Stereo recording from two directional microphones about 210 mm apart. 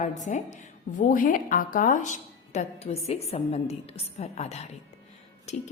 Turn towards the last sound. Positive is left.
turn(degrees=30)  # may be behind; listen again after turning